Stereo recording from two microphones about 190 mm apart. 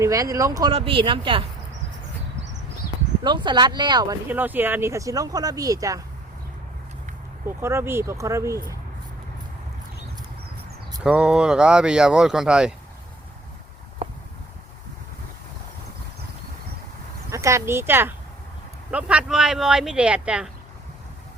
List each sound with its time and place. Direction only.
0.0 s speech: 20° right (ahead or behind)
0.7 s speech: 30° right (ahead or behind)
3.2 s speech: 25° right (ahead or behind)
4.3 s speech: 10° right (ahead or behind)
7.4 s speech: 15° right (ahead or behind)
11.0 s speech: 5° right (ahead or behind)
17.3 s speech: 15° right (ahead or behind)